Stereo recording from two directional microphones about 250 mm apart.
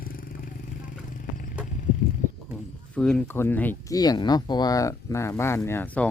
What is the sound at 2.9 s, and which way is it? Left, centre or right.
Speech, centre.